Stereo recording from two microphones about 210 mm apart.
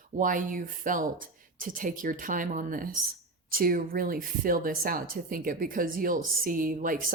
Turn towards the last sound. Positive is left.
turn(degrees=-40)  # may be behind; listen again after turning